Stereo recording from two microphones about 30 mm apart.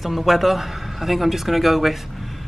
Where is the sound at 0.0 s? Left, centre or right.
Centre.